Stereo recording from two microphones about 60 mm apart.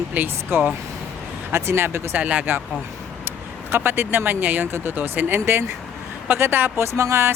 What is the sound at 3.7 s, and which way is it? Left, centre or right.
Speech, right.